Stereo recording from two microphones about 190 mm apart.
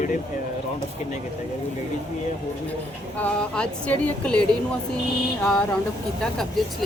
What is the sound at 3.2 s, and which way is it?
Speech, 5° left (ahead or behind).